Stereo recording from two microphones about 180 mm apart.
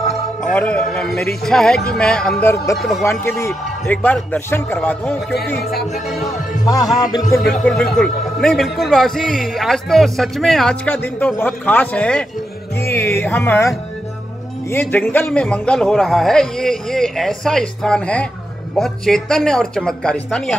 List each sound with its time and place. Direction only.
0.5 s a man's voice: 5° left (ahead or behind)
2.5 s speech: 15° left (ahead or behind)
6.6 s music: 20° left (ahead or behind)
7.3 s a man's voice: centre (ahead or behind)
14.7 s a man's voice: 10° left (ahead or behind)